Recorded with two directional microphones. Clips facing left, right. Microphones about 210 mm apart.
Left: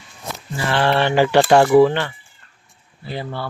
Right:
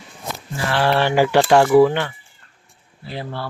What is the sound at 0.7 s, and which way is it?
Speech, 5° right (ahead or behind).